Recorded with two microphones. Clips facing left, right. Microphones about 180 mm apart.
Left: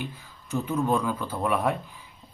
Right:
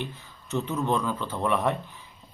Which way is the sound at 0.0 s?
10° left (ahead or behind).